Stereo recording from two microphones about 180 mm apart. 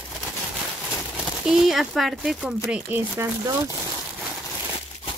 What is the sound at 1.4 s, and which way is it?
Speech, 5° right (ahead or behind).